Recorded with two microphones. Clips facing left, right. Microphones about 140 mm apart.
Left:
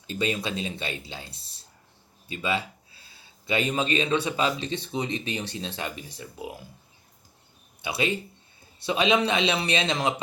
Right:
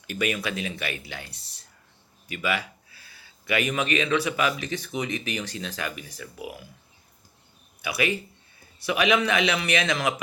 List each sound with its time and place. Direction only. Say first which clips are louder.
0.1 s speech: even; 25° left (ahead or behind)
7.8 s speech: right 1 dB; 25° left (ahead or behind)